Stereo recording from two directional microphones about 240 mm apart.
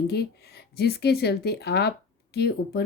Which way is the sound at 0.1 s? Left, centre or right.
Left.